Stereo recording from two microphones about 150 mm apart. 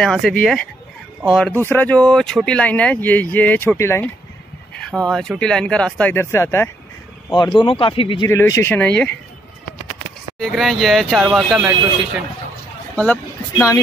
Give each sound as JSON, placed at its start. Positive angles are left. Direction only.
{"t": 0.0, "sound": "speech", "side_deg": 5}
{"t": 4.7, "sound": "speech", "side_deg": 5}
{"t": 7.3, "sound": "speech", "side_deg": 30}
{"t": 8.3, "sound": "speech", "side_deg": 20}
{"t": 10.4, "sound": "speech", "side_deg": 0}
{"t": 12.9, "sound": "speech", "side_deg": 10}